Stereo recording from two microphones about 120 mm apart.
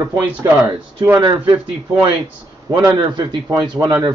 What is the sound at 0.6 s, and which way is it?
Speech, 15° right (ahead or behind).